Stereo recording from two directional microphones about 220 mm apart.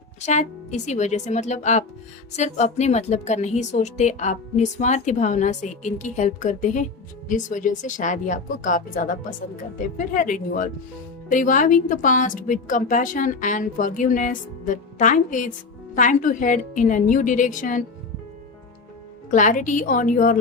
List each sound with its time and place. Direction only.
0.2 s a woman's voice: 30° left (ahead or behind)
10.2 s a woman's voice: 35° left (ahead or behind)
19.3 s a woman's voice: 35° left (ahead or behind)